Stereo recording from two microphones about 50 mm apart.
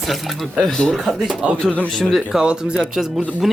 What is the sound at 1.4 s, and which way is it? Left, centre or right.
A man's voice, centre.